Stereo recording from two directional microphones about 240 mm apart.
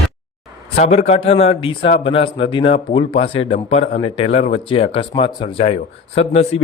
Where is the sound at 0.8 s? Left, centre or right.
Left.